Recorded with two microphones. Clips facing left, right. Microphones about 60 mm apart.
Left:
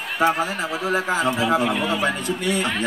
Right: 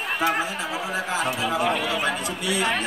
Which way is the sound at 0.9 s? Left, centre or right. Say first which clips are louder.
Left 6 dB; left.